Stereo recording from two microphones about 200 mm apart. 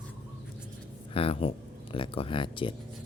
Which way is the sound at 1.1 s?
25° left (ahead or behind).